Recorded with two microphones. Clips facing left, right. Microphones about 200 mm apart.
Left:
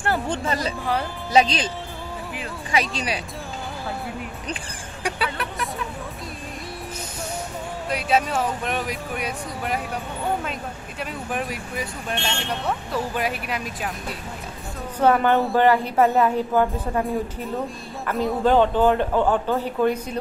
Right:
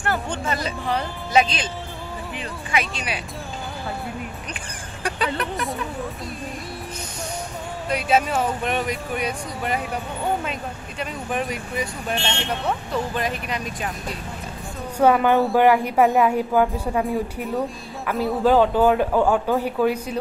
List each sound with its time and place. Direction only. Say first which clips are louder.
0.0 s speech: left 1 dB; 30° left (ahead or behind)
2.7 s speech: left 2 dB; 35° left (ahead or behind)
5.0 s speech: right 2 dB; 5° left (ahead or behind)
7.9 s speech: right 2 dB; centre (ahead or behind)
15.0 s a man's voice: right 2 dB; 10° right (ahead or behind)